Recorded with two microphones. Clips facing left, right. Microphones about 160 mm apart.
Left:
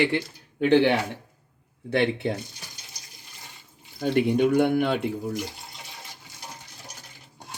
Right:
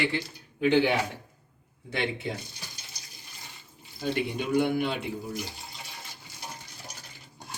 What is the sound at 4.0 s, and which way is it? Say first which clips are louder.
Speech: left 9 dB; 55° left (ahead or behind).